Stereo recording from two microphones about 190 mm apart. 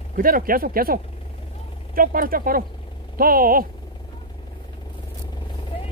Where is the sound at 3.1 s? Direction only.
50° right (ahead or behind).